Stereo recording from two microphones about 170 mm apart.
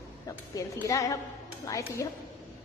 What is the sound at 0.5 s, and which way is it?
A woman's voice, 20° left (ahead or behind).